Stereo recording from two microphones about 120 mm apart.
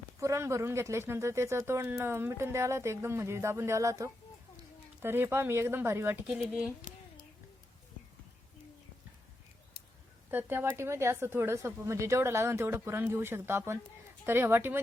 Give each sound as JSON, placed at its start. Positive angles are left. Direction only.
{"t": 0.2, "sound": "speech", "side_deg": -25}
{"t": 6.9, "sound": "a sound", "side_deg": -90}
{"t": 10.2, "sound": "speech", "side_deg": -20}